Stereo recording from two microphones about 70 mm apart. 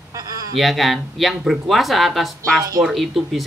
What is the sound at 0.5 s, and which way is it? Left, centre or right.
Speech, centre.